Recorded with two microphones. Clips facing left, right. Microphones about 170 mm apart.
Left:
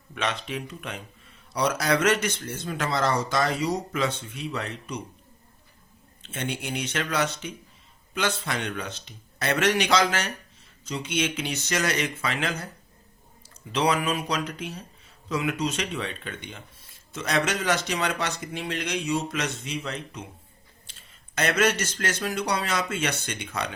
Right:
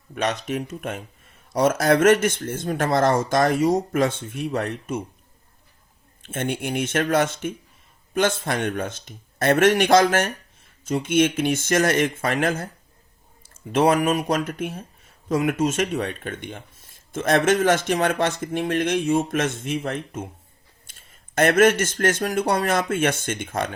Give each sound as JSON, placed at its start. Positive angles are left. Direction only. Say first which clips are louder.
{"t": 0.1, "sound": "speech", "louder": "right 5 dB", "side_deg": -40}
{"t": 6.2, "sound": "speech", "louder": "right 6 dB", "side_deg": -50}